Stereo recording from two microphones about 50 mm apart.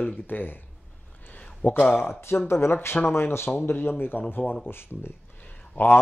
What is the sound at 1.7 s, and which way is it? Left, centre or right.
Speech, left.